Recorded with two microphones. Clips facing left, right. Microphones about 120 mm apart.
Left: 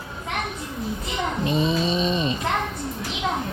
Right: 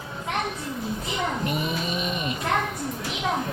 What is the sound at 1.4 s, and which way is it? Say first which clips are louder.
Snoring: left 5 dB; 25° left (ahead or behind).